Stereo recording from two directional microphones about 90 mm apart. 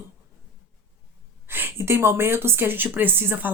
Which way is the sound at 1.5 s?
25° right (ahead or behind).